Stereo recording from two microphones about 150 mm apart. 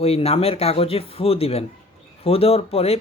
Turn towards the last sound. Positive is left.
turn(degrees=40)  # may be behind; listen again after turning